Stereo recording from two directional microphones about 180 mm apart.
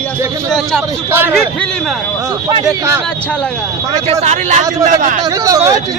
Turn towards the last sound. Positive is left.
turn(degrees=-20)  # may be behind; listen again after turning